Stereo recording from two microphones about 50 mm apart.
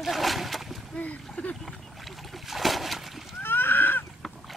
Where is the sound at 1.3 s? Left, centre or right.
Left.